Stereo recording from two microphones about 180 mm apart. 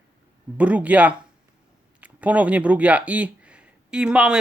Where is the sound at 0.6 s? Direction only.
10° right (ahead or behind).